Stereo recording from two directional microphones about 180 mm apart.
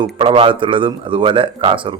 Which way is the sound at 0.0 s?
30° right (ahead or behind).